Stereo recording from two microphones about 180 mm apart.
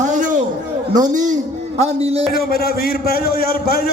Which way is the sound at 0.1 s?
45° right (ahead or behind).